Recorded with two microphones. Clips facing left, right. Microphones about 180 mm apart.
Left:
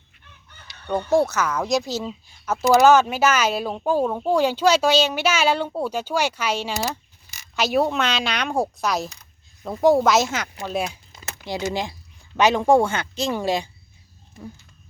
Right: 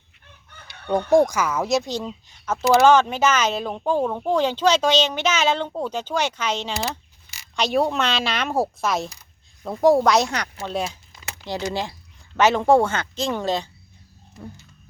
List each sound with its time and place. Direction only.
1.1 s speech: 15° right (ahead or behind); by 13.7 s 10° left (ahead or behind)